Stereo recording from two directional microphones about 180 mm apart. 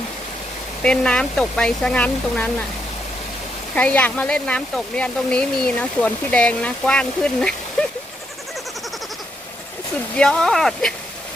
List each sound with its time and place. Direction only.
0.8 s speech: 5° left (ahead or behind)
3.8 s speech: 10° left (ahead or behind)
10.2 s speech: 5° left (ahead or behind)